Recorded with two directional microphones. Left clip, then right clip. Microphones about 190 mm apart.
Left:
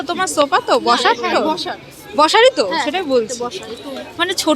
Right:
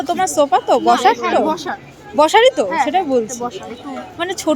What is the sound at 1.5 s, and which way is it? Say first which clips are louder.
Speech: even; 60° right (ahead or behind).